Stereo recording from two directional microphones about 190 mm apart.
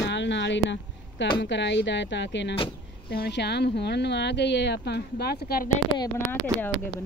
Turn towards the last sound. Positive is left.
turn(degrees=10)  # may be behind; listen again after turning